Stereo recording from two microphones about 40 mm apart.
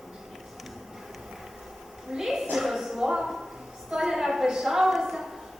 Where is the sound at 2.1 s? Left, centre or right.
Centre.